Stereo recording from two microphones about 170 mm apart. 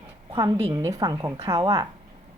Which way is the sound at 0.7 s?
20° right (ahead or behind).